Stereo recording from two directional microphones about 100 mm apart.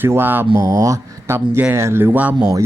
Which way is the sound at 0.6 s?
35° right (ahead or behind).